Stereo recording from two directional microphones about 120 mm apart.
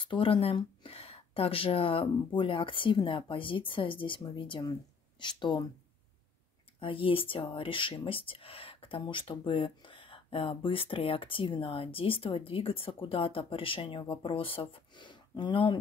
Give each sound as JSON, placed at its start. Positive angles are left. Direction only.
{"t": 0.0, "sound": "speech", "side_deg": 45}
{"t": 6.8, "sound": "speech", "side_deg": 45}